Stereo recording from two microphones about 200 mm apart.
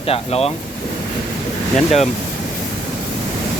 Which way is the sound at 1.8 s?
35° left (ahead or behind).